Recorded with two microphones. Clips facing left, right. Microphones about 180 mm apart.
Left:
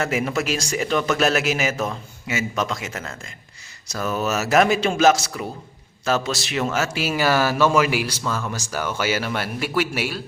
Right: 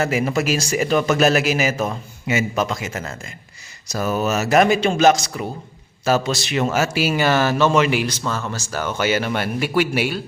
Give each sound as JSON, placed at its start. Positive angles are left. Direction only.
{"t": 0.0, "sound": "speech", "side_deg": 0}
{"t": 1.9, "sound": "a man's voice", "side_deg": -15}
{"t": 2.6, "sound": "speech", "side_deg": 0}